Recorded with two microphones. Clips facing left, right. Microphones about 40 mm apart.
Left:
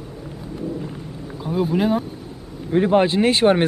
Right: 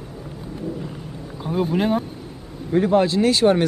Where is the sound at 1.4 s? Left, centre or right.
Centre.